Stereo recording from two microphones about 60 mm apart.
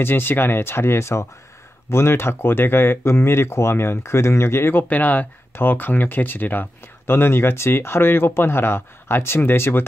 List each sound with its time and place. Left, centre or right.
0.0 s speech: left
4.8 s speech: left